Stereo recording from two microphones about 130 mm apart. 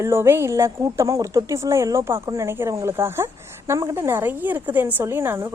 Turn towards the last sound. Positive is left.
turn(degrees=-15)  # may be behind; listen again after turning